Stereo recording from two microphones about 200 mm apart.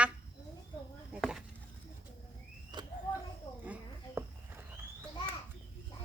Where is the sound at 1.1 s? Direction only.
5° right (ahead or behind).